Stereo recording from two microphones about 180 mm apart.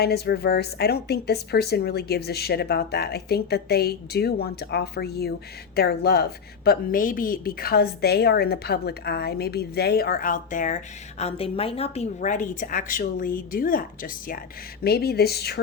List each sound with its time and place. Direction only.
0.0 s a woman's voice: 65° left (ahead or behind)
6.7 s a woman's voice: 50° left (ahead or behind)
14.8 s a woman's voice: 60° left (ahead or behind)